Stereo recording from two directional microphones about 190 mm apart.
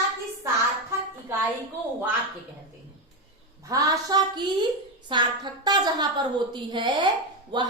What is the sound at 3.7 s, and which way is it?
A woman's voice, 20° right (ahead or behind).